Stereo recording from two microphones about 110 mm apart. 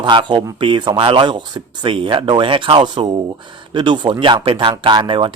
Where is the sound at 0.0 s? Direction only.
45° right (ahead or behind).